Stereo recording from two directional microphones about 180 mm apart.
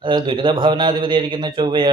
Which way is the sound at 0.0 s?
25° right (ahead or behind).